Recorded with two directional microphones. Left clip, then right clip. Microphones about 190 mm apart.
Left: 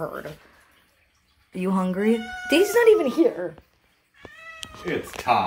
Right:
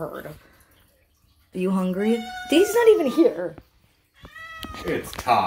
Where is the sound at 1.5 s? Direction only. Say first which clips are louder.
Even; 5° left (ahead or behind).